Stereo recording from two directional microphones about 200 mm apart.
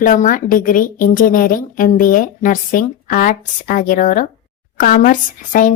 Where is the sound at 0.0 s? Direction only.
40° left (ahead or behind).